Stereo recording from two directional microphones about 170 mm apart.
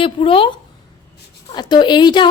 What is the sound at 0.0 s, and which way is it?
A woman's voice, 30° left (ahead or behind).